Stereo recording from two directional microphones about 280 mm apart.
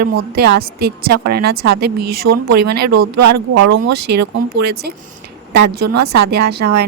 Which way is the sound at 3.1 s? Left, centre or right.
Right.